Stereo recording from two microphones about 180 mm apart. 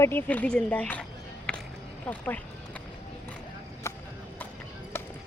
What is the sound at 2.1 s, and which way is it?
Vehicle, 10° left (ahead or behind).